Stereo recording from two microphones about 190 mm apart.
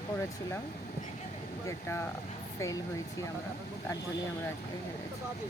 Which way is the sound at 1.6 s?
15° left (ahead or behind).